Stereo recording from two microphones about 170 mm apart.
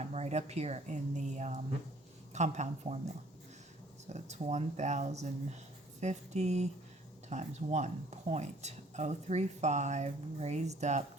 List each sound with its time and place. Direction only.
0.0 s speech: 40° right (ahead or behind)
4.1 s speech: 40° right (ahead or behind)